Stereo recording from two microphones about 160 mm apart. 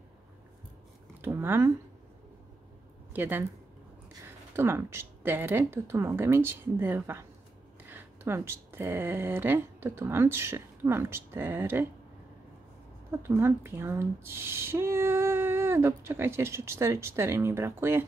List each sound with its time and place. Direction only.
1.2 s speech: 15° right (ahead or behind)
3.1 s speech: 15° right (ahead or behind)
4.6 s speech: 15° right (ahead or behind)
13.1 s speech: 15° right (ahead or behind)